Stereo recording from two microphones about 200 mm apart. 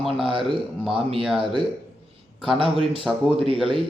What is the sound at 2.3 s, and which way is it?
Speech, centre (ahead or behind).